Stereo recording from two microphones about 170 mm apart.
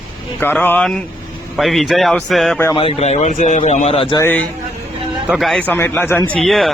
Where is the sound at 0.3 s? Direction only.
10° left (ahead or behind).